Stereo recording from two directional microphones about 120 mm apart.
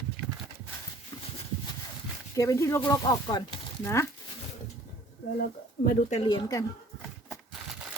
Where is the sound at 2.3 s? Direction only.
25° left (ahead or behind).